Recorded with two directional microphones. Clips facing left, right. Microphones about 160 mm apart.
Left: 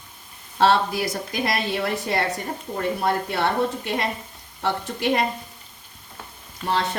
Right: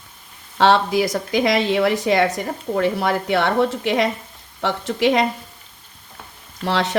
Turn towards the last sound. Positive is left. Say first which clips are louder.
# right 3 dB
turn(degrees=-80)